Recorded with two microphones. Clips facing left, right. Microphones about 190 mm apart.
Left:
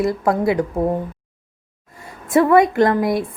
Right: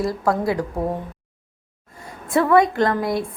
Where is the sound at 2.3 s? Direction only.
20° left (ahead or behind).